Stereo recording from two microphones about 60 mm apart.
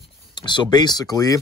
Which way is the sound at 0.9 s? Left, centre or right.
Left.